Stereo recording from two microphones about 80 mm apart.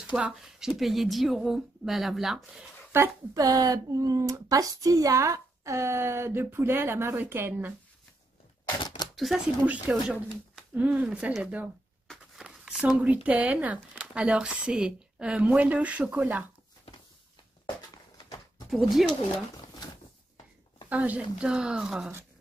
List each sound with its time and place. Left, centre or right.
0.1 s speech: centre
2.9 s speech: right
3.3 s speech: right
8.8 s camera: left
9.1 s speech: centre
9.7 s speech: centre
18.7 s speech: centre
20.9 s speech: centre